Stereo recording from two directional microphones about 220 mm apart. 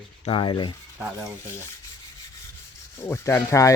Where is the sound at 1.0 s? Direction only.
5° right (ahead or behind).